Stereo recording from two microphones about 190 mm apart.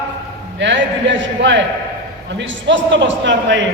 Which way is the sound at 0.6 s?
70° right (ahead or behind).